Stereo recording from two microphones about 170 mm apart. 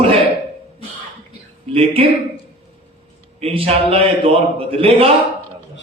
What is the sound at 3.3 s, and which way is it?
A man's voice, 35° right (ahead or behind).